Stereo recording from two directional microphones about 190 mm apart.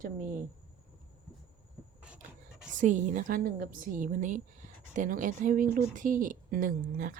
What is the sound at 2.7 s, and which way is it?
A woman's voice, 40° right (ahead or behind).